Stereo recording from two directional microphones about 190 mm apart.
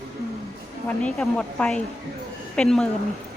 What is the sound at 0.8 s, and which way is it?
Speech, 5° left (ahead or behind).